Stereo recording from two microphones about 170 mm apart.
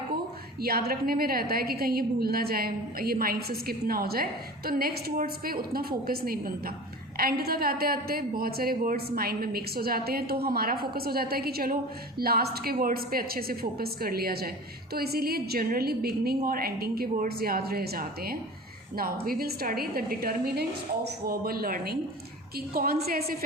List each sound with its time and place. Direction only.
0.6 s a woman's voice: 65° right (ahead or behind)